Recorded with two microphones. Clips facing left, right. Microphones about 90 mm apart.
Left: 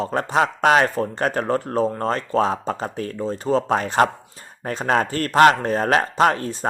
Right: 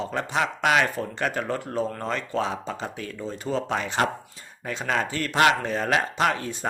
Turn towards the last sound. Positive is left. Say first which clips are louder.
# left 6 dB
turn(degrees=40)  # may be behind; listen again after turning